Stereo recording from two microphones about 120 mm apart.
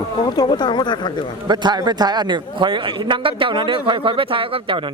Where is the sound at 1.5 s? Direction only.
35° right (ahead or behind).